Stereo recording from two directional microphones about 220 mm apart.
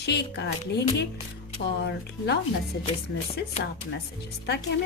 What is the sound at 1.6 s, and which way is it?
Speech, 50° left (ahead or behind).